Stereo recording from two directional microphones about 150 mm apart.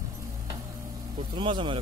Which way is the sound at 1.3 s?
35° right (ahead or behind).